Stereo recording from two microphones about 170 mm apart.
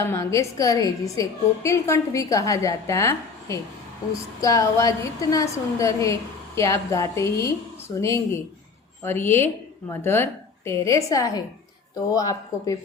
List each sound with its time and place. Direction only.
0.0 s a woman's voice: 15° left (ahead or behind)